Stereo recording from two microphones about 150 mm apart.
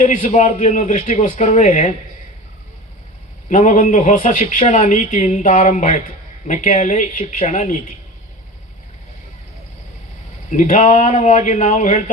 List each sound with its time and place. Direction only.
0.0 s a man's voice: 55° left (ahead or behind)
3.5 s a man's voice: 55° left (ahead or behind)
10.5 s a man's voice: 55° left (ahead or behind)